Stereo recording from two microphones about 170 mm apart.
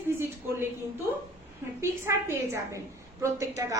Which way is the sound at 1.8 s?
15° right (ahead or behind).